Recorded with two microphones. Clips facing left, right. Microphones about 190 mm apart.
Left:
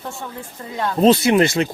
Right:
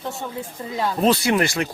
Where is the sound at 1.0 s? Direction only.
25° left (ahead or behind).